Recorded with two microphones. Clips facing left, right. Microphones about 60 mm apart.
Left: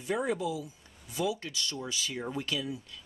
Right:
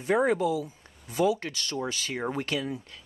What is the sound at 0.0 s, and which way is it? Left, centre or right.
Speech, right.